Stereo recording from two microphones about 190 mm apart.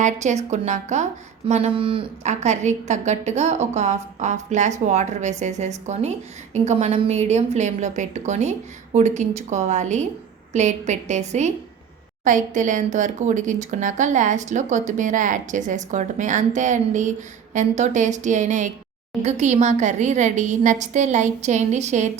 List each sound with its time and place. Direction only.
0.0 s speech: 40° right (ahead or behind)